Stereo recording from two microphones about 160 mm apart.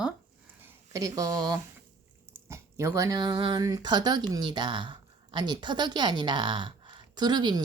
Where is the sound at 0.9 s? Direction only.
20° right (ahead or behind).